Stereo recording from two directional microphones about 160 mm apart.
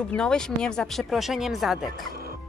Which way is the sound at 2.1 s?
70° right (ahead or behind).